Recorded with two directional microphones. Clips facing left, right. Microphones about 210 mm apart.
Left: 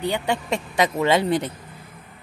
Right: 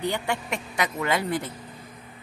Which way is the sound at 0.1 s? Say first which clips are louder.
Left 5 dB; 20° left (ahead or behind).